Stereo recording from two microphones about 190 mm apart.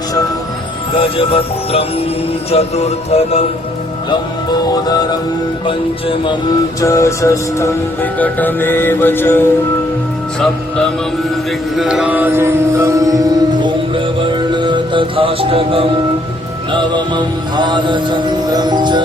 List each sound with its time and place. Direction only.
0.9 s music: 30° left (ahead or behind)
4.7 s music: 20° left (ahead or behind)
6.8 s music: 15° left (ahead or behind)
11.8 s music: 5° right (ahead or behind); by 19.0 s 25° right (ahead or behind)